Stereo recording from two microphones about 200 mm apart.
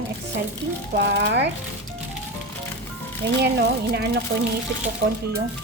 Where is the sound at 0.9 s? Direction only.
55° right (ahead or behind).